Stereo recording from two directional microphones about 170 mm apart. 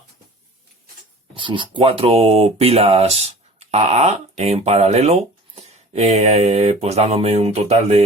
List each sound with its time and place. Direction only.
1.4 s speech: 30° right (ahead or behind)